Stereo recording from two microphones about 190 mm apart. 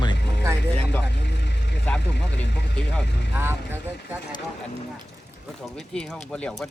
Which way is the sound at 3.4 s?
10° right (ahead or behind).